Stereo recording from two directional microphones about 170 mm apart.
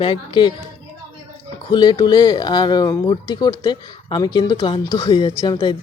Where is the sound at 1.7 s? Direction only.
25° left (ahead or behind).